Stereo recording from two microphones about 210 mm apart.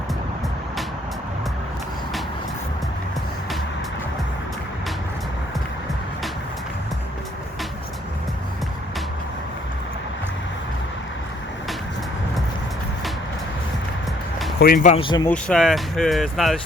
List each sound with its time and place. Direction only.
14.6 s speech: 45° left (ahead or behind)
14.9 s speech: 20° left (ahead or behind)
15.3 s speech: 5° left (ahead or behind)